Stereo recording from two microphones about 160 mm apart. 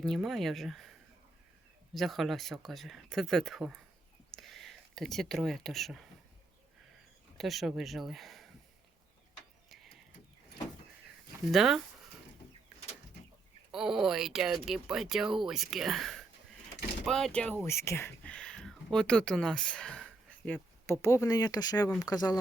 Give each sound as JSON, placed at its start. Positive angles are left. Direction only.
{"t": 0.0, "sound": "speech", "side_deg": 0}
{"t": 7.3, "sound": "speech", "side_deg": 0}
{"t": 11.5, "sound": "speech", "side_deg": 0}
{"t": 13.7, "sound": "speech", "side_deg": -5}
{"t": 17.7, "sound": "speech", "side_deg": 15}